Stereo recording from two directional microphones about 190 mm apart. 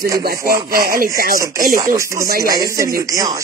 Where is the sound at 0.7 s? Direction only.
50° right (ahead or behind).